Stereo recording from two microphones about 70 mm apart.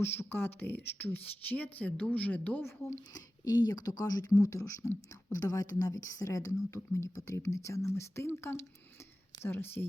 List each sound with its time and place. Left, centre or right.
0.0 s speech: left
3.6 s speech: left
4.4 s speech: left